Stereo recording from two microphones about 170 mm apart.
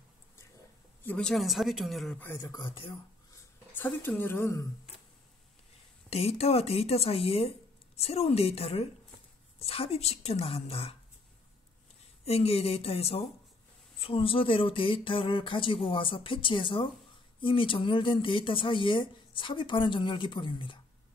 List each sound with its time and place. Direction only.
1.0 s speech: 5° left (ahead or behind)
2.2 s speech: 15° left (ahead or behind)
2.6 s speech: 30° left (ahead or behind)
3.3 s a sound: 10° left (ahead or behind)
6.0 s speech: 35° left (ahead or behind)
12.3 s speech: 35° left (ahead or behind)